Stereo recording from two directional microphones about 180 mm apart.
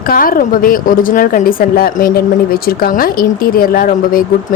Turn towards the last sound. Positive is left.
turn(degrees=50)  # may be behind; listen again after turning